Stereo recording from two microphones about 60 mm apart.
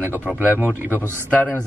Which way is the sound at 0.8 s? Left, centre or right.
Right.